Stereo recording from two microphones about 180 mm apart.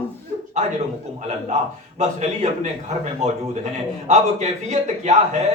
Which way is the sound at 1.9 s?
35° right (ahead or behind).